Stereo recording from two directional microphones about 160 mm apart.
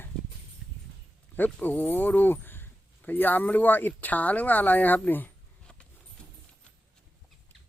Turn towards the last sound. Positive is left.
turn(degrees=10)  # may be behind; listen again after turning